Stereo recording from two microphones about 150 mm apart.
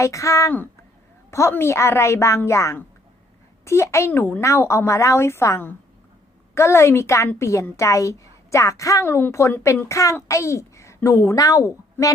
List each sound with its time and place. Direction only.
0.0 s a woman's voice: 20° left (ahead or behind)